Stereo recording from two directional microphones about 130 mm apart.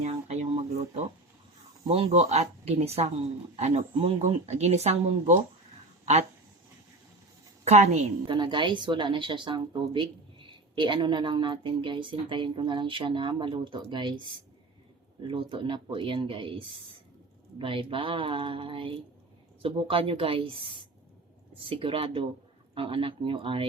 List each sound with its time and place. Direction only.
0.0 s a sound: 55° right (ahead or behind)
1.8 s speech: 50° right (ahead or behind)
7.6 s a woman's voice: 60° right (ahead or behind)
8.3 s speech: 40° right (ahead or behind)
15.3 s speech: 40° right (ahead or behind)
21.7 s speech: 45° right (ahead or behind)